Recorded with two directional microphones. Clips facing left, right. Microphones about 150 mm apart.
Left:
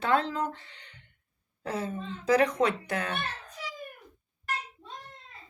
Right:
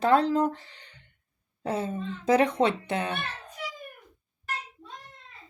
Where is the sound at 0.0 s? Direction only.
40° right (ahead or behind).